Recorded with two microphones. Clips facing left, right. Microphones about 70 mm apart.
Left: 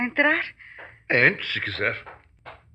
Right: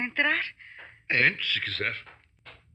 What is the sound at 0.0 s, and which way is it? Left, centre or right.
A woman's voice, left.